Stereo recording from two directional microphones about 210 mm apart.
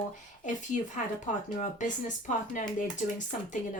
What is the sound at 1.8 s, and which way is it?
Speech, 35° left (ahead or behind).